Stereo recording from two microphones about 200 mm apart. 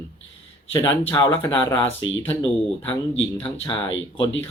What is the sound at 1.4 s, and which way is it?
Speech, 20° left (ahead or behind).